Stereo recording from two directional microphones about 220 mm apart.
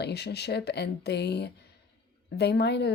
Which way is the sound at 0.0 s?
50° left (ahead or behind).